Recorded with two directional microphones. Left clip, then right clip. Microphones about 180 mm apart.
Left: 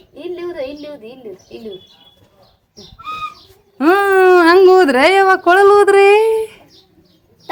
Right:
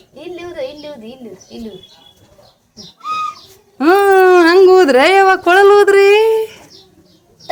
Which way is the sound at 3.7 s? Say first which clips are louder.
Right 2 dB; 5° left (ahead or behind).